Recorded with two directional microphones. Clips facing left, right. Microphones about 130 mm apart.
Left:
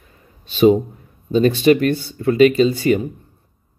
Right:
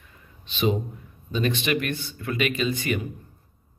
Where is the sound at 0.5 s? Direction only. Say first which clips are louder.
Left 12 dB; 40° left (ahead or behind).